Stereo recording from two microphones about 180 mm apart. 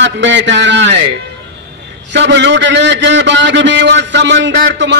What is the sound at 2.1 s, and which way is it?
A man's voice, 80° right.